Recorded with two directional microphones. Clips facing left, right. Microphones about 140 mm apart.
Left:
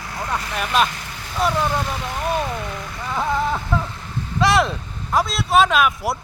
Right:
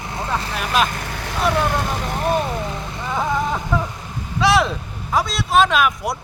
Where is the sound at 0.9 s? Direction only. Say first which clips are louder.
Right 2 dB; 65° right (ahead or behind).